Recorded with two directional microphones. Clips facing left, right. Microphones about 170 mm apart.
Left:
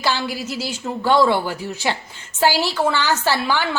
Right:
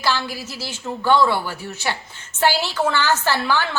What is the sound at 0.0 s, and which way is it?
A woman's voice, 15° left (ahead or behind).